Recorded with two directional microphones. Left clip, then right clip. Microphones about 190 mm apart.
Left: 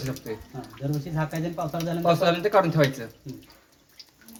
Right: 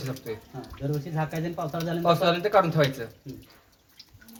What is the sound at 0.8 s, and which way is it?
Speech, 15° right (ahead or behind).